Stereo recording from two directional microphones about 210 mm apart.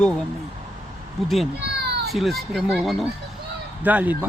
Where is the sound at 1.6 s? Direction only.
50° right (ahead or behind).